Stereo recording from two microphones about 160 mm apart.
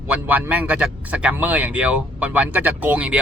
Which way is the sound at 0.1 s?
10° right (ahead or behind).